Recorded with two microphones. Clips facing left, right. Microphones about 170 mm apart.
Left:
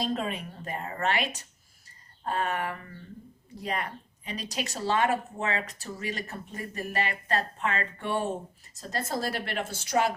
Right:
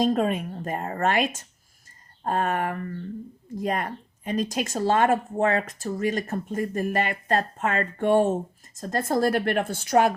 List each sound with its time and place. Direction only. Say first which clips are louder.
0.0 s speech: right 8 dB; 45° right (ahead or behind)